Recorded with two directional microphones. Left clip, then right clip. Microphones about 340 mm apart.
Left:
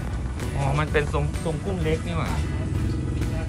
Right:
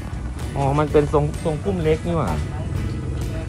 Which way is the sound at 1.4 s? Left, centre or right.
Right.